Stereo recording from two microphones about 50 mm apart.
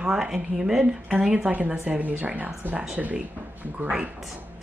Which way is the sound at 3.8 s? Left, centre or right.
Right.